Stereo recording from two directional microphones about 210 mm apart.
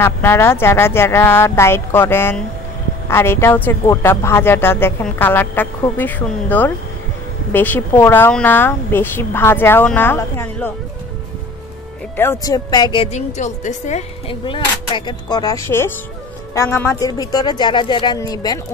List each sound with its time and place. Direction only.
0.0 s a woman's voice: 10° left (ahead or behind)
12.2 s a woman's voice: 15° left (ahead or behind)